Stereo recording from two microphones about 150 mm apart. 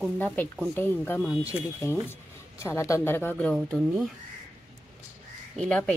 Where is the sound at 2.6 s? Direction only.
20° left (ahead or behind).